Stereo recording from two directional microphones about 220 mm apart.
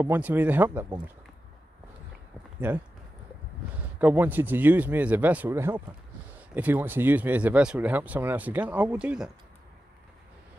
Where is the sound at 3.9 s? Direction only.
10° right (ahead or behind).